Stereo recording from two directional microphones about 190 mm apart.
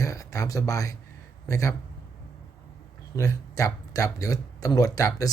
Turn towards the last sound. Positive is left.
turn(degrees=20)  # may be behind; listen again after turning